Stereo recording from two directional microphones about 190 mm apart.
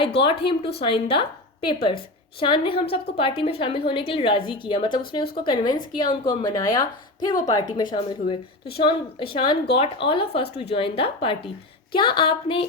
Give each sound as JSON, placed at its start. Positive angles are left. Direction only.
{"t": 0.3, "sound": "a woman's voice", "side_deg": 30}